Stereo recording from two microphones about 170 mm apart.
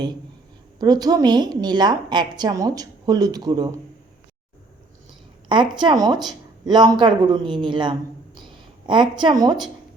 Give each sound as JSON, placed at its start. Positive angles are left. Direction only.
{"t": 0.8, "sound": "a woman's voice", "side_deg": -25}
{"t": 5.5, "sound": "a woman's voice", "side_deg": -25}